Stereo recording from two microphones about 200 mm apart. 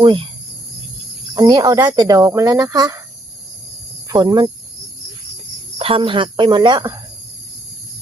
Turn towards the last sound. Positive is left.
turn(degrees=-25)  # may be behind; listen again after turning